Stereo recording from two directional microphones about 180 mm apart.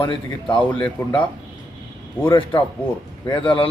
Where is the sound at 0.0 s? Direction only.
30° left (ahead or behind).